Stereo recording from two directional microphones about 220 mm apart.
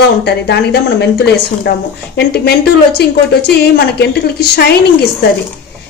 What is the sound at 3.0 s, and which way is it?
A woman's voice, 45° left (ahead or behind).